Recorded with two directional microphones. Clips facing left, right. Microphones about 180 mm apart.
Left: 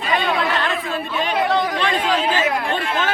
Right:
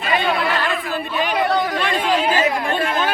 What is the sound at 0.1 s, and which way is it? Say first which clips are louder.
Chatter: right 1 dB; 5° right (ahead or behind).